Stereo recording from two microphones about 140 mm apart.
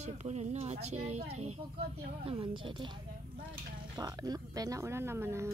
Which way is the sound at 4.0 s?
30° right (ahead or behind).